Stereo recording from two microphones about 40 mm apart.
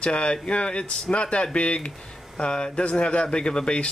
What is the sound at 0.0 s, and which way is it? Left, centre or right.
Speech, left.